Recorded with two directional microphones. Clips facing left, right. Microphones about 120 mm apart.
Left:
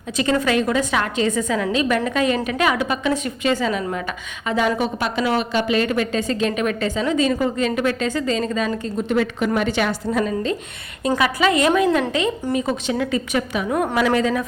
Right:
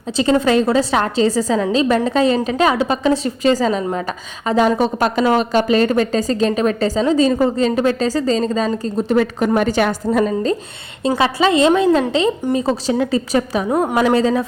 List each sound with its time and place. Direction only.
0.2 s a woman's voice: 30° right (ahead or behind)